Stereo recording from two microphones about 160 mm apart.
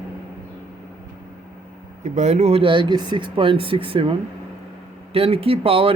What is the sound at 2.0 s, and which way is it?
Speech, 45° right (ahead or behind).